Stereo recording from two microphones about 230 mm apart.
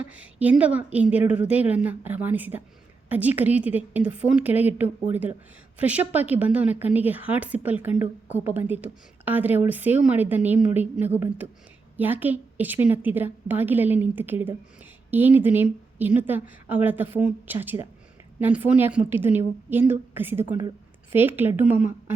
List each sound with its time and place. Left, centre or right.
0.1 s a woman's voice: centre